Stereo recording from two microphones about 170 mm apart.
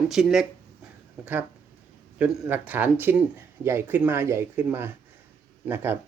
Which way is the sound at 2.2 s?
10° right (ahead or behind).